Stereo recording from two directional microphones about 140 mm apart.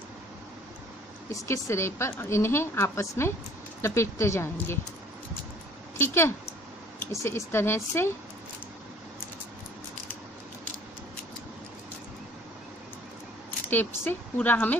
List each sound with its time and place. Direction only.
1.3 s a woman's voice: 20° left (ahead or behind)
5.9 s a woman's voice: 15° left (ahead or behind)
13.7 s a woman's voice: 15° left (ahead or behind)